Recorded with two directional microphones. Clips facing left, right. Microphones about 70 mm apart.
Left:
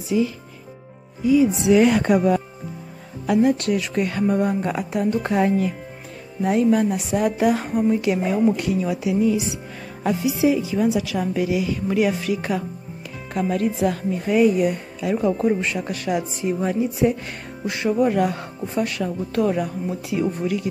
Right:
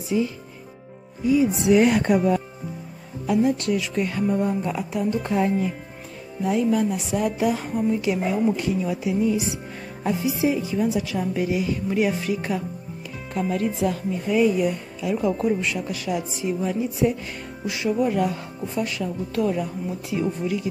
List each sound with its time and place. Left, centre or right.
1.7 s a woman's voice: left
2.0 s speech: left
3.3 s speech: left
6.4 s speech: left
10.0 s a woman's voice: left
13.3 s speech: left
15.2 s a woman's voice: left